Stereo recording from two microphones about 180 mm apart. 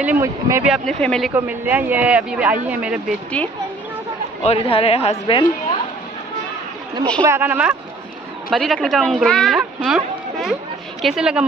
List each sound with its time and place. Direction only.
0.0 s speech: 15° right (ahead or behind)
1.0 s a woman's voice: 5° left (ahead or behind)
1.3 s speech: 10° right (ahead or behind)
4.4 s a woman's voice: 30° left (ahead or behind)
7.2 s speech: 10° right (ahead or behind)
8.5 s a woman's voice: centre (ahead or behind)